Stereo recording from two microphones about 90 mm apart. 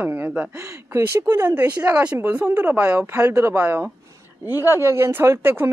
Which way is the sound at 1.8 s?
15° right (ahead or behind).